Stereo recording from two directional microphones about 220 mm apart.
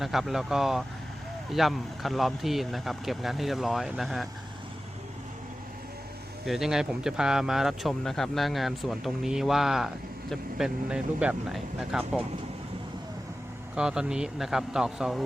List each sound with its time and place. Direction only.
0.0 s speech: centre (ahead or behind)
6.4 s speech: centre (ahead or behind)
13.7 s speech: 5° right (ahead or behind)